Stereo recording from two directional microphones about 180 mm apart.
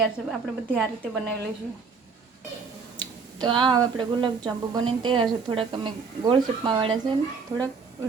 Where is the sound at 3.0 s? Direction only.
25° right (ahead or behind).